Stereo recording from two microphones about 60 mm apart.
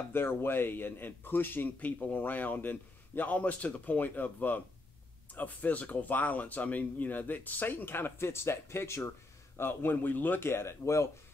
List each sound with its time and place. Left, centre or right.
0.1 s speech: left
9.6 s speech: left